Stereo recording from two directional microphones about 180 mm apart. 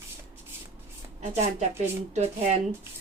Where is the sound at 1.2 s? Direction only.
40° right (ahead or behind).